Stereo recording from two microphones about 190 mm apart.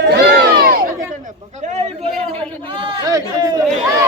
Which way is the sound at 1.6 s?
35° right (ahead or behind).